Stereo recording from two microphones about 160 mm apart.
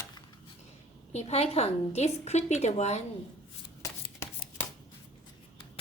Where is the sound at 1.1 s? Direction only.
40° left (ahead or behind).